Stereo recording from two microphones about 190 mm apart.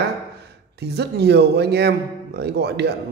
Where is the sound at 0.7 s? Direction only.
60° right (ahead or behind).